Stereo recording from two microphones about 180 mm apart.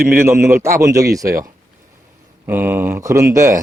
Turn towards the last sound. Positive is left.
turn(degrees=-15)  # may be behind; listen again after turning